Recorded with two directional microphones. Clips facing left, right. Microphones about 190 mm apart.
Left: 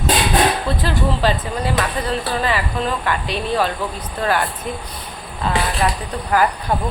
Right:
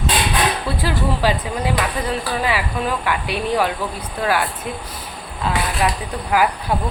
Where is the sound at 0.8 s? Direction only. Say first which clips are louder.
Left 1 dB; 10° right (ahead or behind).